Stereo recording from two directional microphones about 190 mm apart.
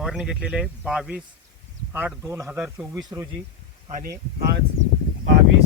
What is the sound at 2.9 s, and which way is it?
Speech, 20° right (ahead or behind).